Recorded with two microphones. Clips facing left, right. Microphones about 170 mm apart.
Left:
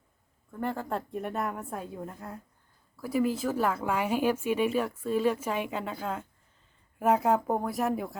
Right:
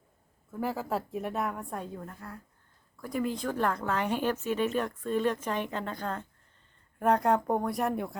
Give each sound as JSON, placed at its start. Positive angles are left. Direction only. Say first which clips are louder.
{"t": 0.5, "sound": "a woman's voice", "louder": "even", "side_deg": -5}
{"t": 2.0, "sound": "a woman's voice", "louder": "left 3 dB", "side_deg": 20}
{"t": 2.9, "sound": "a woman's voice", "louder": "left 4 dB", "side_deg": 5}